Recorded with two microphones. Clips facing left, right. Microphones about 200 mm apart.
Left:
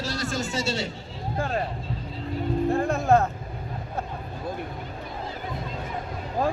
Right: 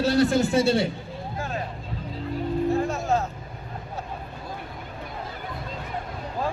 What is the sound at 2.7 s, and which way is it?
Music, 55° left (ahead or behind).